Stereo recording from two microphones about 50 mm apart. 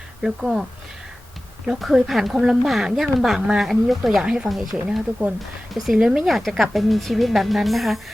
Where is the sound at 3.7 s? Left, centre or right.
Centre.